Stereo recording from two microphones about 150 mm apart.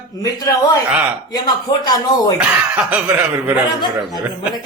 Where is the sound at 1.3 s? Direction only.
25° left (ahead or behind).